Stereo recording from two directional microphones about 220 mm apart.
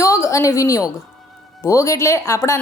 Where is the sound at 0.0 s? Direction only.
15° left (ahead or behind).